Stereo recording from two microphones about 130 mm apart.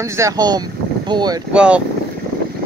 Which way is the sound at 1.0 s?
35° right (ahead or behind).